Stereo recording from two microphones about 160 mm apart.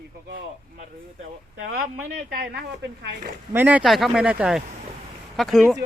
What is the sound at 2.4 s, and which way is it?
Speech, 90° right.